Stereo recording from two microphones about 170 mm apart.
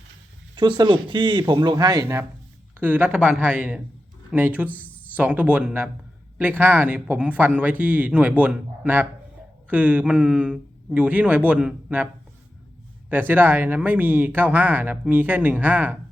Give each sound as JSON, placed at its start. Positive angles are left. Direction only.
{"t": 0.5, "sound": "speech", "side_deg": -25}
{"t": 13.1, "sound": "speech", "side_deg": -10}